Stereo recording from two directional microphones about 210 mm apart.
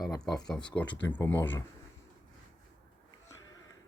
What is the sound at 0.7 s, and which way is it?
Speech, 5° left (ahead or behind).